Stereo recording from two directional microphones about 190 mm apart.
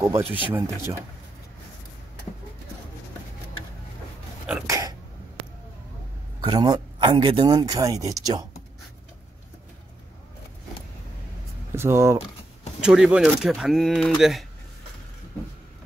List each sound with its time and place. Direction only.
0.3 s speech: 10° right (ahead or behind)
4.6 s sneeze: 20° right (ahead or behind)
6.4 s speech: 20° right (ahead or behind)
11.7 s speech: 15° right (ahead or behind)
12.8 s speech: 5° right (ahead or behind)